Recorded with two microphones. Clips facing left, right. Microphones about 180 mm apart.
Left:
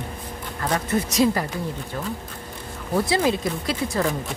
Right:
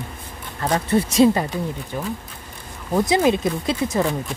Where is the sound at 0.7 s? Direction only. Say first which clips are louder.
Right 5 dB; 30° right (ahead or behind).